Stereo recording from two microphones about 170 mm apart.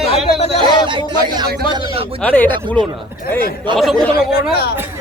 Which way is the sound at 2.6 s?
30° right (ahead or behind).